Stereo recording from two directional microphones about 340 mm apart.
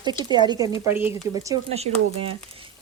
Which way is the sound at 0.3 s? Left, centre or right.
Centre.